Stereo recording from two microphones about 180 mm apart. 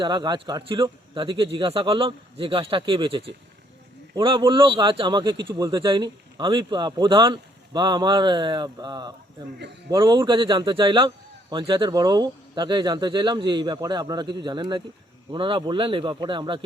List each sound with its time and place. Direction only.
0.0 s a man's voice: 25° right (ahead or behind)